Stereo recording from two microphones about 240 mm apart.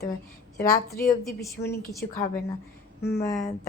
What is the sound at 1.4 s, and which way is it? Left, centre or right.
Speech, centre.